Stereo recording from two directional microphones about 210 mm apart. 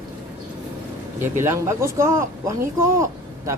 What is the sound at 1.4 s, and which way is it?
Speech, 10° right (ahead or behind).